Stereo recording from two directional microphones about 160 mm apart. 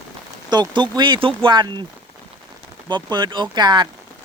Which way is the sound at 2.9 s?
25° right (ahead or behind).